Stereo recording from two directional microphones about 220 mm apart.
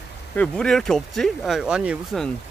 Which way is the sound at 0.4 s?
5° left (ahead or behind).